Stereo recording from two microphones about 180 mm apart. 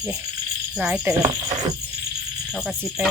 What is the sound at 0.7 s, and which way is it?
Speech, 5° right (ahead or behind).